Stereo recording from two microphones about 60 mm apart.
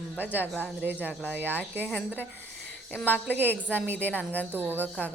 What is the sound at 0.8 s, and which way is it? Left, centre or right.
Speech, right.